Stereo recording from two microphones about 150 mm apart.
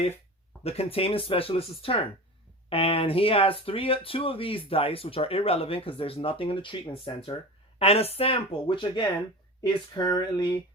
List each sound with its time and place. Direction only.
0.6 s speech: 40° left (ahead or behind)